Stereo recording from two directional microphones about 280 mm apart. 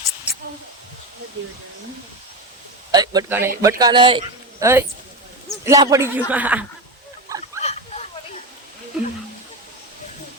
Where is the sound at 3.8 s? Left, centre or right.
Centre.